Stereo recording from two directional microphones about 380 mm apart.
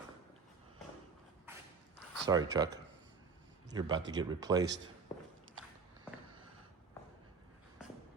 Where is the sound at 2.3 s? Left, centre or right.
Centre.